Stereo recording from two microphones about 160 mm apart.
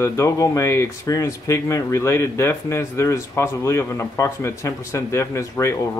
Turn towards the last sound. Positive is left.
turn(degrees=20)  # may be behind; listen again after turning